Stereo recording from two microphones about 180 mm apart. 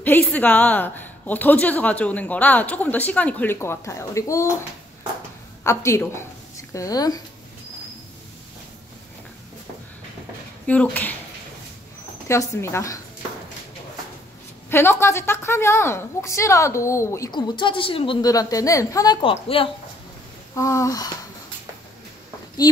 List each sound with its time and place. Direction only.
0.0 s a woman's voice: 10° left (ahead or behind)
5.6 s a woman's voice: 15° left (ahead or behind)
10.7 s a woman's voice: 10° left (ahead or behind)
12.3 s a woman's voice: 15° left (ahead or behind)
14.7 s a woman's voice: 15° left (ahead or behind)
19.2 s a woman's voice: 30° left (ahead or behind)
20.5 s a woman's voice: 15° left (ahead or behind)